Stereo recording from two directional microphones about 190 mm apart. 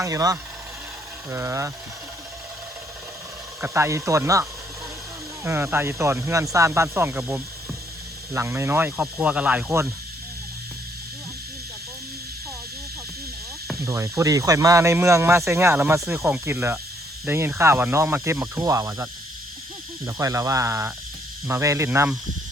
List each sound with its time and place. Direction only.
0.0 s speech: 15° right (ahead or behind)
3.6 s speech: 15° right (ahead or behind)
13.8 s speech: 15° right (ahead or behind)
20.1 s speech: 15° right (ahead or behind)